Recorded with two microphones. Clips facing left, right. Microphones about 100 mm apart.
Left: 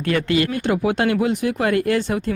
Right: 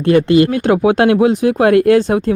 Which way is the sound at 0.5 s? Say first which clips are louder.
Right 8 dB; 70° right (ahead or behind).